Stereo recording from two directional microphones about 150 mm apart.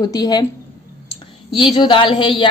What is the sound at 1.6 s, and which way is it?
Speech, 30° left (ahead or behind).